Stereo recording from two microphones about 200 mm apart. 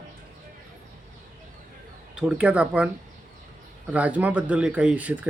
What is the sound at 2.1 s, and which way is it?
Speech, 5° right (ahead or behind).